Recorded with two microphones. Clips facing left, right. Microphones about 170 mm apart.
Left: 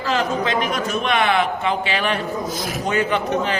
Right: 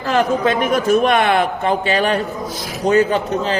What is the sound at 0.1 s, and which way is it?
A man's voice, 50° right (ahead or behind).